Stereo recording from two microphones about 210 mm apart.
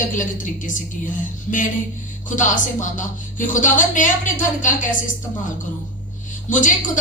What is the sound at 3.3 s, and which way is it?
A woman's voice, 35° left (ahead or behind).